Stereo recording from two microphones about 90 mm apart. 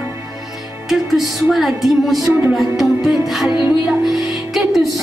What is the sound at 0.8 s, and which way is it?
A woman's voice, 5° right (ahead or behind).